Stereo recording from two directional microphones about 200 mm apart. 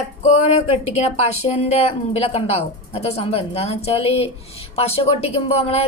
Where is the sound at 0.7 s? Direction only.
35° left (ahead or behind).